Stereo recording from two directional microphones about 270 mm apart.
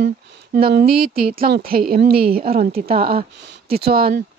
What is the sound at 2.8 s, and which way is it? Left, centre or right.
Speech, right.